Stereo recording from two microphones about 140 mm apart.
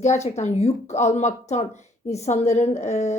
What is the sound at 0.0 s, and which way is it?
A woman's voice, 55° left (ahead or behind).